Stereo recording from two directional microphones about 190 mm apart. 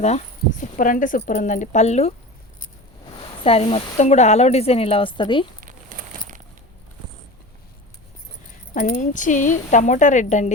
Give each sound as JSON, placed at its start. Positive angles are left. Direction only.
{"t": 0.6, "sound": "a woman's voice", "side_deg": 45}
{"t": 3.4, "sound": "speech", "side_deg": 30}
{"t": 5.5, "sound": "a sound", "side_deg": -45}
{"t": 8.7, "sound": "speech", "side_deg": 40}